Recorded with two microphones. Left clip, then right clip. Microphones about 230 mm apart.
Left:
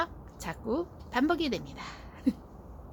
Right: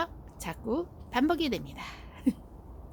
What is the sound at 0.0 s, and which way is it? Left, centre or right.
A woman's voice, centre.